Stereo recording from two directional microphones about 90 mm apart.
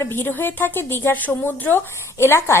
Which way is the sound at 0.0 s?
25° left (ahead or behind).